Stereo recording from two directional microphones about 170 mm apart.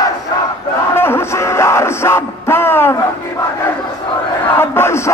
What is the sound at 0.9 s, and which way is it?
Music, 15° left (ahead or behind).